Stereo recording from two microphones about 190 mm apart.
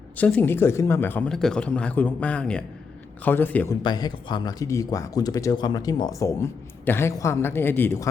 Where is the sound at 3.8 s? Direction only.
20° left (ahead or behind).